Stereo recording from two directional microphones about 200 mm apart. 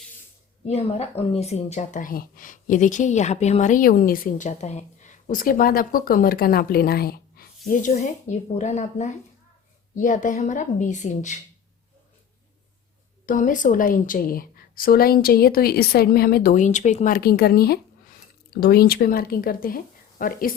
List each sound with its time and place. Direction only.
0.7 s a woman's voice: 30° left (ahead or behind)
13.2 s a woman's voice: 40° left (ahead or behind)